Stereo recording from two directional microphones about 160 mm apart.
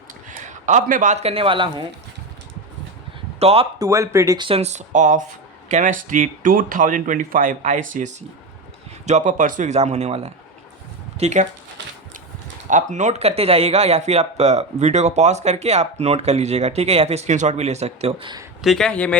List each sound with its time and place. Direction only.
0.3 s a man's voice: 50° right (ahead or behind); by 1.9 s 30° right (ahead or behind)
3.4 s speech: 40° right (ahead or behind)
3.8 s speech: 20° right (ahead or behind)
4.4 s speech: 40° right (ahead or behind)
12.6 s speech: 50° right (ahead or behind)
18.6 s speech: centre (ahead or behind)